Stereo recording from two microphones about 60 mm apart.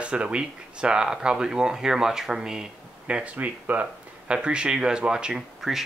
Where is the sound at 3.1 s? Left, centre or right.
Right.